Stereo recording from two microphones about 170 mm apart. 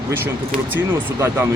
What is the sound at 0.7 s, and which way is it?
Speech, 15° right (ahead or behind).